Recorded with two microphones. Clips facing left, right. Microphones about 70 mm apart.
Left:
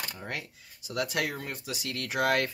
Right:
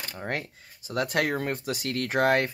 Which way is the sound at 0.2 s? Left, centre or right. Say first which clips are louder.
Right 6 dB; right.